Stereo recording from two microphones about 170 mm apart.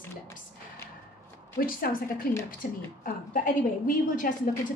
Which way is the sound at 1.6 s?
55° left (ahead or behind).